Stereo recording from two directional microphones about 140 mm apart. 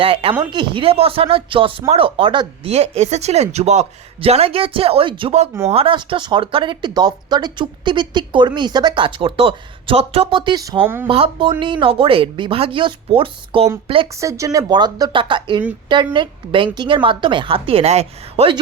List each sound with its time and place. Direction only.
0.0 s speech: 40° right (ahead or behind)
2.7 s speech: 50° right (ahead or behind); by 10.8 s 30° right (ahead or behind)
10.8 s speech: 15° right (ahead or behind)
11.1 s speech: 40° right (ahead or behind)
14.2 s speech: 20° right (ahead or behind); by 18.5 s 50° right (ahead or behind)